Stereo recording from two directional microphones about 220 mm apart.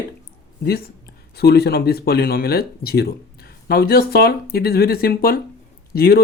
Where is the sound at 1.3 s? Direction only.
45° left (ahead or behind).